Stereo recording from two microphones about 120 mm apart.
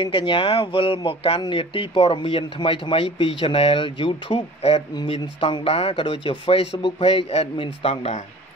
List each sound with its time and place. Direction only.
0.0 s speech: 40° left (ahead or behind)